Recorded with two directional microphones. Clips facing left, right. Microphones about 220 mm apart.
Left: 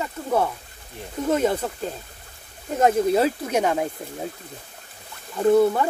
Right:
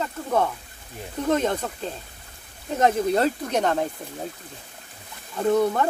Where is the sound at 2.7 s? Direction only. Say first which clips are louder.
Left 2 dB; 5° left (ahead or behind).